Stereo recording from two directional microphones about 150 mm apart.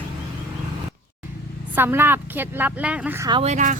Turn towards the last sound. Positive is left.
turn(degrees=-50)  # may be behind; listen again after turning